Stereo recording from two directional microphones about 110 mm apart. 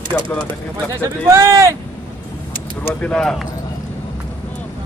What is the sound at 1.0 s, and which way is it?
Speech, 25° right (ahead or behind).